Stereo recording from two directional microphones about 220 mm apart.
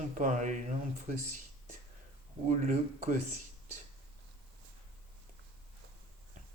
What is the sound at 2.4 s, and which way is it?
Speech, 30° right (ahead or behind).